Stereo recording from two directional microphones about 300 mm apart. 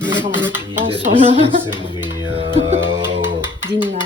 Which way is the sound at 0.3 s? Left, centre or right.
Centre.